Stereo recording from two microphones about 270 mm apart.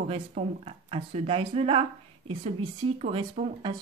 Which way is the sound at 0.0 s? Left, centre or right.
Right.